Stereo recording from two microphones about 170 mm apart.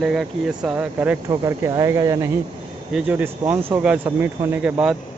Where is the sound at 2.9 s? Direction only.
5° right (ahead or behind).